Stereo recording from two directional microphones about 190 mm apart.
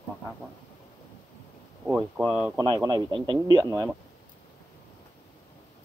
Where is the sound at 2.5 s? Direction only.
20° right (ahead or behind).